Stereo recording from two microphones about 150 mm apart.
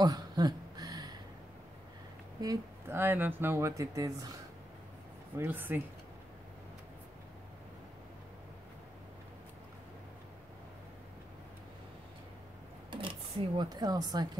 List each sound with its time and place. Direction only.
0.0 s a sound: 25° right (ahead or behind)
2.4 s speech: 20° right (ahead or behind)
5.4 s speech: 15° right (ahead or behind)
12.9 s speech: 35° right (ahead or behind)